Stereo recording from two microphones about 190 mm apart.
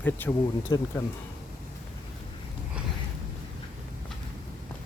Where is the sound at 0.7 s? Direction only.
20° left (ahead or behind).